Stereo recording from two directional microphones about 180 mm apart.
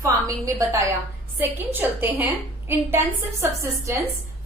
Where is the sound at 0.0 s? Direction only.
15° right (ahead or behind).